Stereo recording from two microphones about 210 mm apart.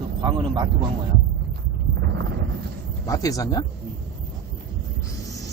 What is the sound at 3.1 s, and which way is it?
Speech, 15° left (ahead or behind).